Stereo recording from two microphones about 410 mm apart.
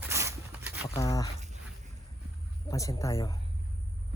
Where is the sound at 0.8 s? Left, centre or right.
Centre.